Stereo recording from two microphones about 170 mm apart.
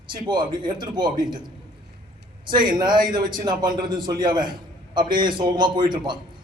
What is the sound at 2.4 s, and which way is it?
Speech, 25° right (ahead or behind).